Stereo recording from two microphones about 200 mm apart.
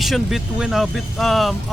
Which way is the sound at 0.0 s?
Centre (ahead or behind).